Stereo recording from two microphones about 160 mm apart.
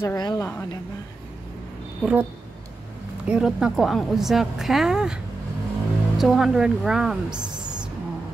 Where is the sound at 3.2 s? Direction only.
5° right (ahead or behind).